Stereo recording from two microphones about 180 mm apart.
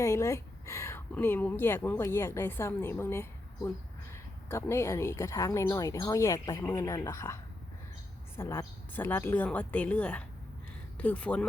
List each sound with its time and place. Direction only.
0.0 s a woman's voice: 15° left (ahead or behind)
8.4 s a woman's voice: 15° left (ahead or behind)